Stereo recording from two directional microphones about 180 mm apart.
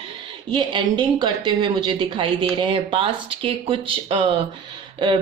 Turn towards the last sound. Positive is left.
turn(degrees=-25)  # may be behind; listen again after turning